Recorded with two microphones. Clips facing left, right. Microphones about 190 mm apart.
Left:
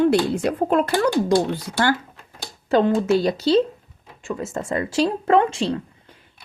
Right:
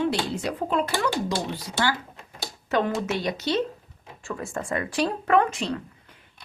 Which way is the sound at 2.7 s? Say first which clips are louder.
Left 7 dB; 30° left (ahead or behind).